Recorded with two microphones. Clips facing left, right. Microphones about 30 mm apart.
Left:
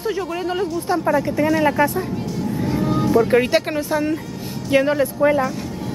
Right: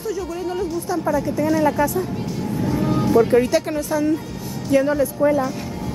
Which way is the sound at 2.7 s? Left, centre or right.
Centre.